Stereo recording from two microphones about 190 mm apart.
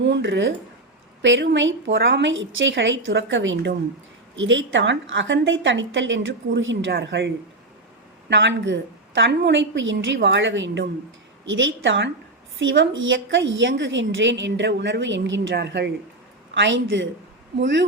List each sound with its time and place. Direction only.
0.0 s a woman's voice: 70° right (ahead or behind)
8.3 s a woman's voice: 70° right (ahead or behind)
16.6 s a woman's voice: 75° right (ahead or behind)